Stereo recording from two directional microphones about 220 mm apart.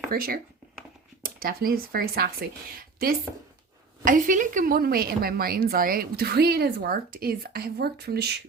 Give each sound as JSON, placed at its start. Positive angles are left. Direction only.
{"t": 0.1, "sound": "speech", "side_deg": -40}
{"t": 4.0, "sound": "a woman's voice", "side_deg": -35}